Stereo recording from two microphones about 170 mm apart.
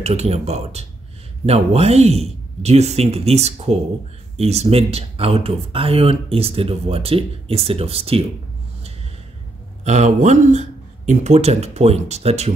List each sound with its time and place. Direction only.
0.0 s speech: 40° right (ahead or behind)
9.8 s speech: 45° right (ahead or behind)